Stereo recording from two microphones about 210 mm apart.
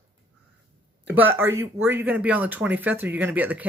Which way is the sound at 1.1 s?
10° right (ahead or behind).